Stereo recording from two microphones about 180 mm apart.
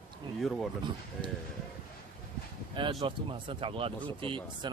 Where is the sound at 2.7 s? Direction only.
30° right (ahead or behind).